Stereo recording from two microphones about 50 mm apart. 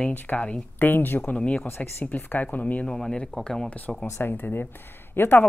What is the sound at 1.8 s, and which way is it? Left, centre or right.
Speech, left.